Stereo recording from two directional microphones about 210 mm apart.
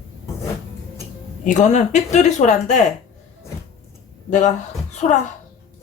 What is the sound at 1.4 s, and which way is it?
A woman's voice, 35° left (ahead or behind).